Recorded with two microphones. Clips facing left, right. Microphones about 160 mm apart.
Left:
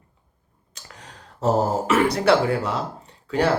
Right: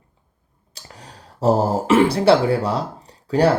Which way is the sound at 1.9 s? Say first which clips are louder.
Right 5 dB; 30° right (ahead or behind).